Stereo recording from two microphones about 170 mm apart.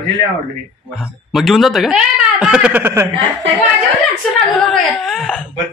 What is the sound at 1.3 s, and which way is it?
Speech, centre (ahead or behind).